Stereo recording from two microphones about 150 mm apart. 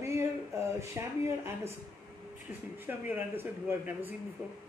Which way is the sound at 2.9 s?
15° right (ahead or behind).